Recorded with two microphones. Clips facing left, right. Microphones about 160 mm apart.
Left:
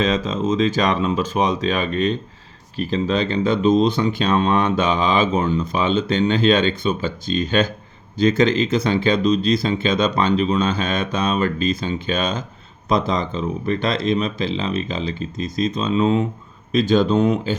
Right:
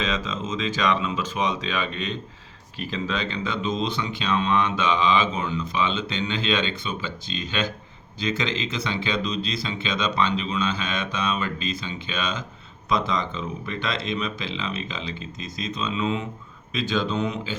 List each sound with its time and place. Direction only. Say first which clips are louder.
0.0 s speech: left 8 dB; 45° left (ahead or behind)